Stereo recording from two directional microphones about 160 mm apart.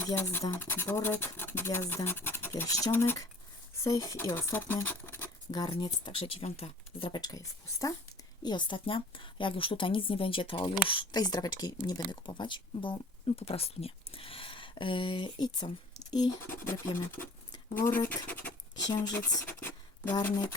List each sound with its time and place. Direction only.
0.1 s speech: 15° left (ahead or behind)
5.5 s a woman's voice: 30° left (ahead or behind); by 18.5 s 10° left (ahead or behind)
18.9 s speech: 20° left (ahead or behind)